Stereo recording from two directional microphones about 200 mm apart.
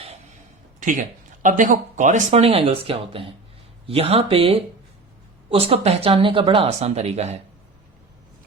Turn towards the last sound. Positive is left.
turn(degrees=-35)  # may be behind; listen again after turning